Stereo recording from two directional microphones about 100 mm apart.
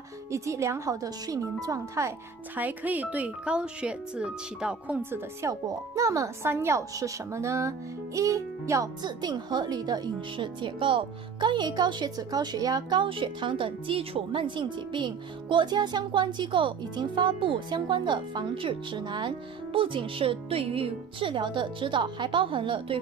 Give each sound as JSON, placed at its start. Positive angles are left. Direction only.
{"t": 0.3, "sound": "speech", "side_deg": -30}
{"t": 2.5, "sound": "speech", "side_deg": -15}
{"t": 5.4, "sound": "speech", "side_deg": -30}
{"t": 9.0, "sound": "speech", "side_deg": -45}